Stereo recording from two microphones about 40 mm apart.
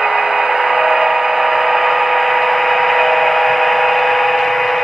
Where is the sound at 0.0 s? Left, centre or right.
Centre.